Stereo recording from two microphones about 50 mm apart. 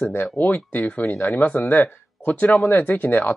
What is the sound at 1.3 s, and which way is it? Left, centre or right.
Speech, left.